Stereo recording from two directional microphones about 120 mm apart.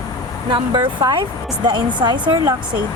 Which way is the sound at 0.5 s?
40° right (ahead or behind).